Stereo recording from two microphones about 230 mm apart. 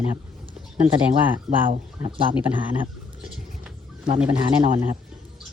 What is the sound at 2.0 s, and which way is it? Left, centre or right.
Speech, centre.